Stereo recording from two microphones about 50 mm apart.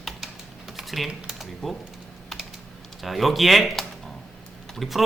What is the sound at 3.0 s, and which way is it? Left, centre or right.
Speech, centre.